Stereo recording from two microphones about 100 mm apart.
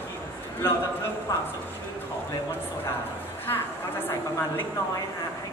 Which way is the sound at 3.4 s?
20° left (ahead or behind).